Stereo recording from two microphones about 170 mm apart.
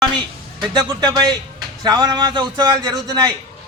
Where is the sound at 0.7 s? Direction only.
25° right (ahead or behind).